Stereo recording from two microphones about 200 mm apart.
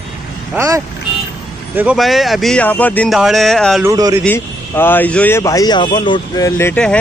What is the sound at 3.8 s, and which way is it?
Speech, 15° right (ahead or behind).